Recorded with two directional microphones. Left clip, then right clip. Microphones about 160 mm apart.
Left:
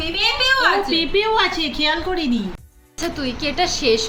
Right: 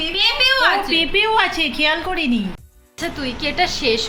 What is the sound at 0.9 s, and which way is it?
A woman's voice, 20° right (ahead or behind).